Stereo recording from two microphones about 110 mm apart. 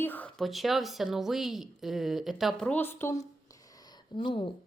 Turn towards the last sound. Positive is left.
turn(degrees=50)  # may be behind; listen again after turning